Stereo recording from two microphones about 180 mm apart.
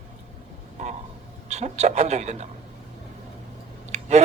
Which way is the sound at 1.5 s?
40° right (ahead or behind).